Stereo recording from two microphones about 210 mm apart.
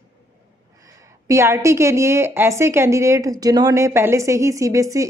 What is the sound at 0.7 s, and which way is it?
Speech, 15° right (ahead or behind).